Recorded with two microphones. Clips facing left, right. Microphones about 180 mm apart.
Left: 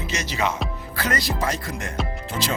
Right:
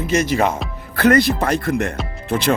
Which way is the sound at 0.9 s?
60° right (ahead or behind).